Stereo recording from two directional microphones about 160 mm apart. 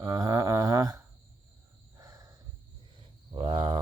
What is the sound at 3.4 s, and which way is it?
Speech, 45° right (ahead or behind).